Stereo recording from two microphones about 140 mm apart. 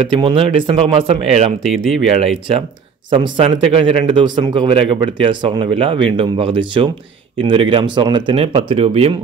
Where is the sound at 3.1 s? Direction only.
40° right (ahead or behind).